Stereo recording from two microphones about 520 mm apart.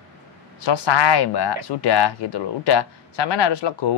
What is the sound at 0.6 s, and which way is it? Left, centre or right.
Speech, left.